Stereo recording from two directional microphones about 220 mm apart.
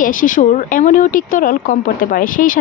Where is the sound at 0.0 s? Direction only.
35° left (ahead or behind).